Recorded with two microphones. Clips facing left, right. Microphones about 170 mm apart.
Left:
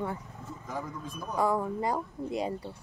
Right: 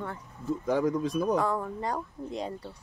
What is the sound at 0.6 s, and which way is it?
Speech, 85° right.